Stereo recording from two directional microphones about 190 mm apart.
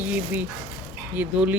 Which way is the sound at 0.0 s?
10° right (ahead or behind).